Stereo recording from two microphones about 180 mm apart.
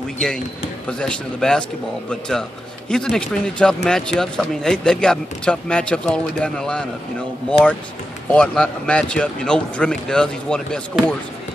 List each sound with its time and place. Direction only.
0.8 s speech: 5° left (ahead or behind)
8.3 s speech: 5° left (ahead or behind)